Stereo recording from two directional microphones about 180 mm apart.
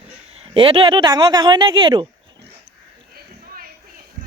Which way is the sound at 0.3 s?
30° right (ahead or behind).